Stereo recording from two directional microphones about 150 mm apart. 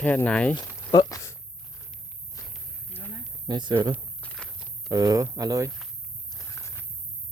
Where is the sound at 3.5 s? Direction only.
30° right (ahead or behind).